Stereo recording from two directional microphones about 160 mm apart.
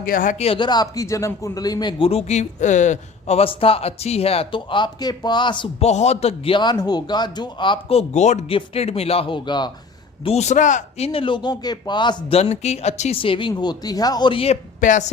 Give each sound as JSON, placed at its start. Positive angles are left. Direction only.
{"t": 0.0, "sound": "speech", "side_deg": 60}
{"t": 0.3, "sound": "a man's voice", "side_deg": 35}
{"t": 5.8, "sound": "a man's voice", "side_deg": 45}
{"t": 10.2, "sound": "a man's voice", "side_deg": 45}
{"t": 12.4, "sound": "a man's voice", "side_deg": 40}
{"t": 14.8, "sound": "a woman's voice", "side_deg": 50}